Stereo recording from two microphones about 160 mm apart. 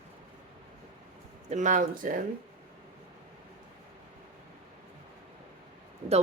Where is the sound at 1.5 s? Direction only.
50° right (ahead or behind).